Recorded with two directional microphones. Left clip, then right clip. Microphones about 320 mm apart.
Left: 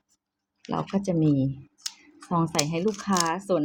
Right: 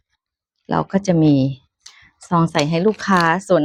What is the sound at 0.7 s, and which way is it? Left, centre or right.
Speech, centre.